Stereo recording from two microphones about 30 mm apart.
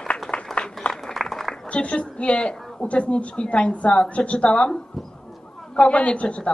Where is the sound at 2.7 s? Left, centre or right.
Left.